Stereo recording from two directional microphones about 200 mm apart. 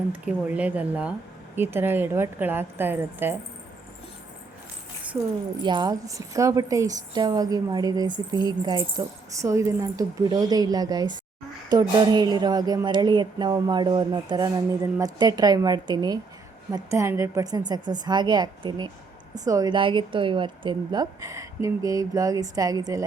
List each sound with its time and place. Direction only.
0.1 s a woman's voice: 10° right (ahead or behind)
5.6 s a woman's voice: 20° right (ahead or behind)